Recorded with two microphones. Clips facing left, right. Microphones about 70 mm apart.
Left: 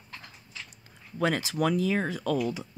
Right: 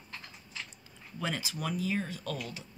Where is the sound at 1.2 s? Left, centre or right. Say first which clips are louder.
Left 9 dB; left.